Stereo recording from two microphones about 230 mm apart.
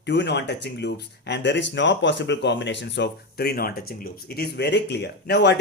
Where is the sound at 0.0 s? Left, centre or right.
Left.